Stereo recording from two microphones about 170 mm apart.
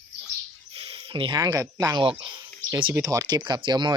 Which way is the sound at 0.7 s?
30° right (ahead or behind).